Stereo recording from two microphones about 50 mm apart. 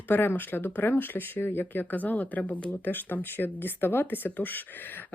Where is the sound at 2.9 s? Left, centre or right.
Left.